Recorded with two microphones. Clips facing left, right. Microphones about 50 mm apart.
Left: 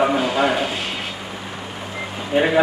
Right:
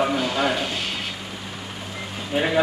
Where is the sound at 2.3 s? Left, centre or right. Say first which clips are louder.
Left 4 dB; centre.